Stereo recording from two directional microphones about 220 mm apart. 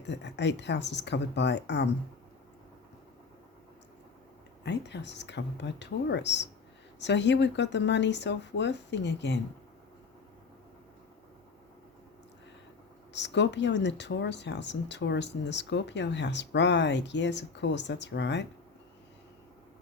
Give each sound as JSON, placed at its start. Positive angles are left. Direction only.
{"t": 0.0, "sound": "speech", "side_deg": 50}
{"t": 4.6, "sound": "speech", "side_deg": 50}
{"t": 13.1, "sound": "speech", "side_deg": 55}